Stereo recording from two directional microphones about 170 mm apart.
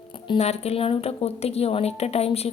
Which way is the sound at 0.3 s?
40° left (ahead or behind).